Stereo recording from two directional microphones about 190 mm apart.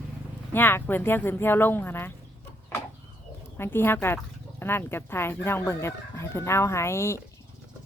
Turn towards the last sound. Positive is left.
turn(degrees=15)  # may be behind; listen again after turning